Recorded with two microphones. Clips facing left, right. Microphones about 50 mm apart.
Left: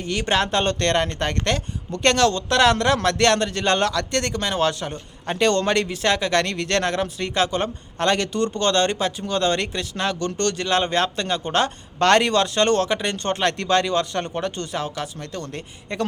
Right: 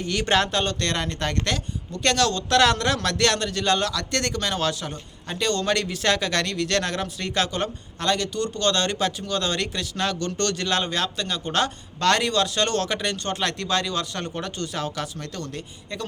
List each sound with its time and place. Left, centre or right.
0.0 s speech: centre
0.5 s a man's voice: left
4.1 s speech: left
5.4 s speech: left
5.6 s speech: left
6.4 s speech: left
7.9 s speech: left
8.5 s speech: left
11.9 s speech: left
13.2 s a man's voice: left; by 15.4 s centre
15.5 s speech: left